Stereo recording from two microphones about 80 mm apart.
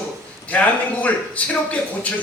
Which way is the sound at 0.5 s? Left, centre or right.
Left.